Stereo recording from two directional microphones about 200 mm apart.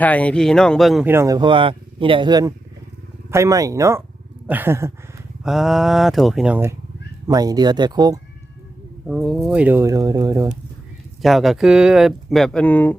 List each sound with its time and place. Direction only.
0.0 s speech: 5° left (ahead or behind)
1.0 s speech: 10° right (ahead or behind)
9.0 s speech: centre (ahead or behind); by 10.5 s 15° right (ahead or behind)
11.2 s speech: centre (ahead or behind)